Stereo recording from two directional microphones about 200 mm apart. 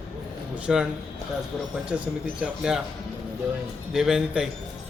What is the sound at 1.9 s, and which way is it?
Speech, 5° right (ahead or behind).